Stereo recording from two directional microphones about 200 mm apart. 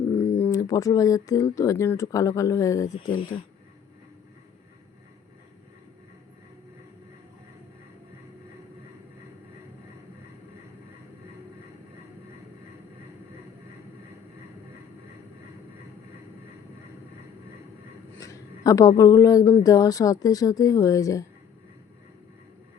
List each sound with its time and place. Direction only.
0.3 s speech: 15° left (ahead or behind)
2.9 s speech: 45° left (ahead or behind)
18.2 s speech: 15° left (ahead or behind)